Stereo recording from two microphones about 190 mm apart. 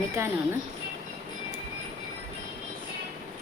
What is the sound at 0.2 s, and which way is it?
Speech, 15° right (ahead or behind).